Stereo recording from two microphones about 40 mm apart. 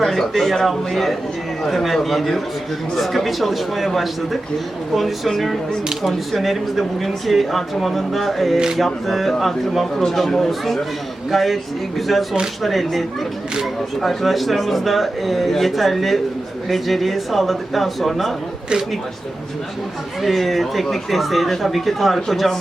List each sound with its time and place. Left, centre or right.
0.0 s speech: centre
8.5 s mantra: centre
8.8 s speech: centre
20.2 s speech: centre